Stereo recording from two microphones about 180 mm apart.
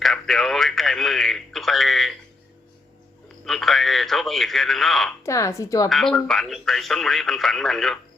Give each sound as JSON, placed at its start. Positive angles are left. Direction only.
{"t": 0.0, "sound": "radio", "side_deg": 0}
{"t": 3.4, "sound": "speech", "side_deg": 0}
{"t": 5.2, "sound": "a woman's voice", "side_deg": 15}
{"t": 5.9, "sound": "speech", "side_deg": 0}